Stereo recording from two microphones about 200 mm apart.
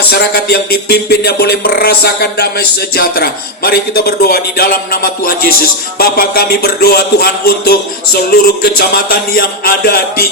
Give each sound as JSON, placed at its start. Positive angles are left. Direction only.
{"t": 0.1, "sound": "speech", "side_deg": 55}